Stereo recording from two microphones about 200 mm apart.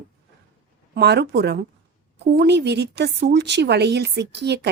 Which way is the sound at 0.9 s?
55° right (ahead or behind).